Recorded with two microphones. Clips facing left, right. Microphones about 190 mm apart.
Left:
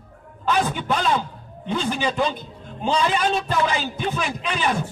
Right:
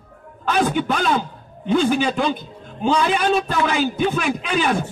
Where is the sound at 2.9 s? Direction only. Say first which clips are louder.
Right 3 dB; 60° right (ahead or behind).